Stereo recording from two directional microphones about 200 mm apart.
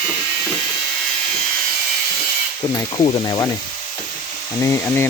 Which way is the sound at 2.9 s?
20° left (ahead or behind).